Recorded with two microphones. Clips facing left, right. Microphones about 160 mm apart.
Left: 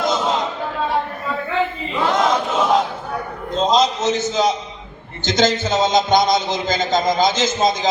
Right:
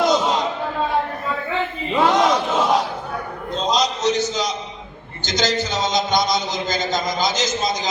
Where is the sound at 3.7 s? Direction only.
25° left (ahead or behind).